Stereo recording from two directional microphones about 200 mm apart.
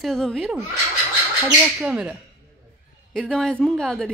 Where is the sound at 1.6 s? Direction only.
5° right (ahead or behind).